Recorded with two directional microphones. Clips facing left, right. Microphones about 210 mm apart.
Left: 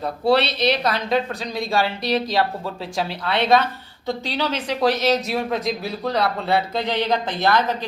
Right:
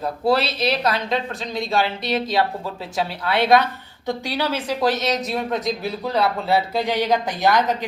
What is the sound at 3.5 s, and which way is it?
A woman's voice, 15° right (ahead or behind).